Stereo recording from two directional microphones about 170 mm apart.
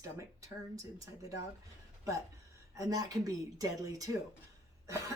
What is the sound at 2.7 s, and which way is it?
Speech, 20° right (ahead or behind).